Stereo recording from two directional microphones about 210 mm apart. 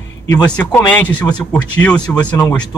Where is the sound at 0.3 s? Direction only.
5° left (ahead or behind).